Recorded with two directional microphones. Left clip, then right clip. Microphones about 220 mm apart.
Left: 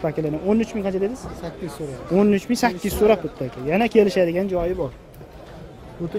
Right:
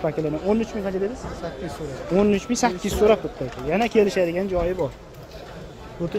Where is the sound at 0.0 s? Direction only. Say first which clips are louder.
Even; 20° left (ahead or behind).